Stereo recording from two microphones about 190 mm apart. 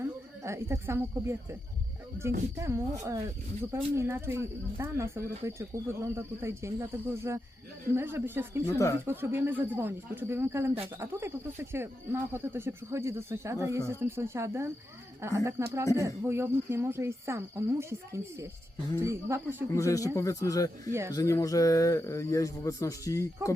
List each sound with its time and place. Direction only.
0.4 s speech: 15° right (ahead or behind)
8.6 s a man's voice: 15° left (ahead or behind)
9.0 s speech: 15° right (ahead or behind)
19.7 s a man's voice: 15° left (ahead or behind)